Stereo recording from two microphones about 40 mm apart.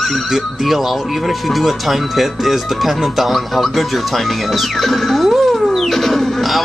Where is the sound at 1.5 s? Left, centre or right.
Centre.